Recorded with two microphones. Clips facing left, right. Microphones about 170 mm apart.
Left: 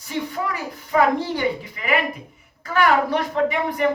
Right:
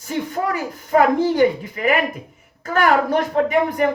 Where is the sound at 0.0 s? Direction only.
45° right (ahead or behind).